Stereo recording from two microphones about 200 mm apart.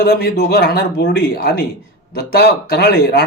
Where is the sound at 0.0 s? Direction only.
55° left (ahead or behind).